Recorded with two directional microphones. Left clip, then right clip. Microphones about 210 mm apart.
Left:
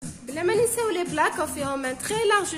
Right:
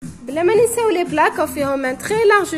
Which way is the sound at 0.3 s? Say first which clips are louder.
Right 8 dB; 20° right (ahead or behind).